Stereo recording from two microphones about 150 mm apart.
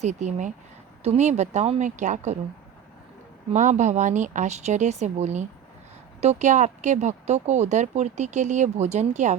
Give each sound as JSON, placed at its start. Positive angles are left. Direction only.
{"t": 0.0, "sound": "speech", "side_deg": -50}
{"t": 3.5, "sound": "speech", "side_deg": -55}